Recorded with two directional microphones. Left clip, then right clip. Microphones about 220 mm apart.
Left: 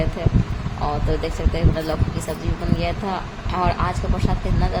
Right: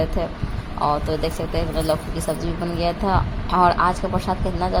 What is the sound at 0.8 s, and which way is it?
Speech, 15° right (ahead or behind).